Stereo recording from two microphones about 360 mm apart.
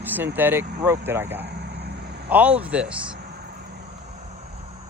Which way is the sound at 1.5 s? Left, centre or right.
Right.